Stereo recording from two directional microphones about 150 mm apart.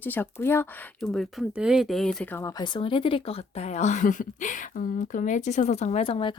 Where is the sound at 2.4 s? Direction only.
25° left (ahead or behind).